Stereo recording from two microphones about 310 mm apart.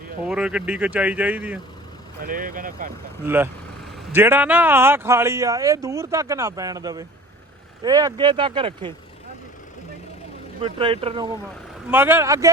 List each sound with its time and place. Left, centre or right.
0.3 s speech: centre
2.2 s speech: right
3.2 s speech: centre
10.6 s speech: centre
11.9 s speech: centre